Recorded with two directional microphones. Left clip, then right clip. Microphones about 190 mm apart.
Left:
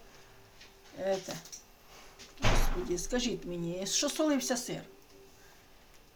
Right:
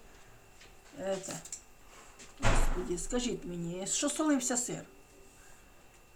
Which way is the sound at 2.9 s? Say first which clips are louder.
Left 3 dB; 15° left (ahead or behind).